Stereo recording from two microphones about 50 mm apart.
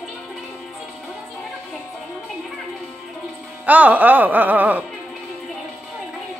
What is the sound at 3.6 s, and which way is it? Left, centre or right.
Music, right.